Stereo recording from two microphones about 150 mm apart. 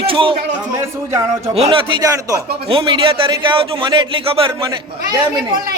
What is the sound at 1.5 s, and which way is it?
Speech, 40° right (ahead or behind).